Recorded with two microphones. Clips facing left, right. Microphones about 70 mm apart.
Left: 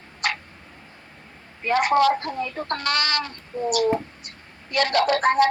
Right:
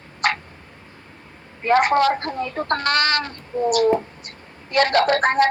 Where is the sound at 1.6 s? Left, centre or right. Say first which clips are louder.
Right 2 dB; right.